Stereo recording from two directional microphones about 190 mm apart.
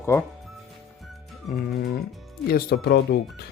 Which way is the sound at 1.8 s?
55° left (ahead or behind).